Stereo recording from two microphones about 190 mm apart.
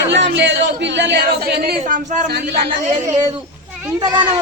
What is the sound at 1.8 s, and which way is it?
Speech, 40° right (ahead or behind).